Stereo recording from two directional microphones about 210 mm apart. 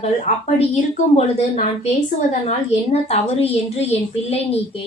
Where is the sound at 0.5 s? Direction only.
30° left (ahead or behind).